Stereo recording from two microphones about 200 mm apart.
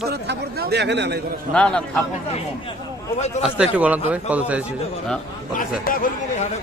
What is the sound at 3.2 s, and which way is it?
Speech, 35° left (ahead or behind).